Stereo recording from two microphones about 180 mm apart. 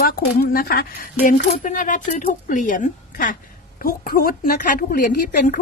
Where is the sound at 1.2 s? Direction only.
45° left (ahead or behind).